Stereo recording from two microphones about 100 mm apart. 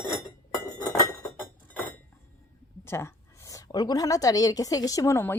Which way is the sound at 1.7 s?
15° left (ahead or behind).